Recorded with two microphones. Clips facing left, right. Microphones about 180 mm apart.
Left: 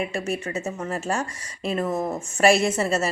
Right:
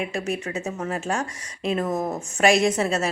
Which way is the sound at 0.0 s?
Centre (ahead or behind).